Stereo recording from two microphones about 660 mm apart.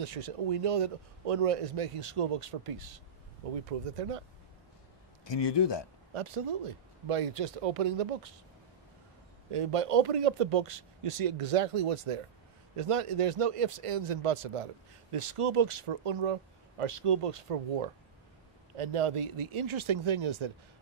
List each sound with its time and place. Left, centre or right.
0.0 s speech: right
5.2 s speech: left
6.1 s speech: right
9.5 s speech: right
18.8 s speech: right